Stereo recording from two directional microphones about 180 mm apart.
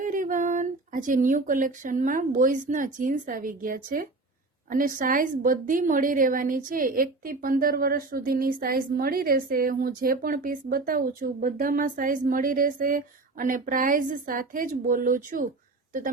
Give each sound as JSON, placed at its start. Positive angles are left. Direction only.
{"t": 0.0, "sound": "a woman's voice", "side_deg": -45}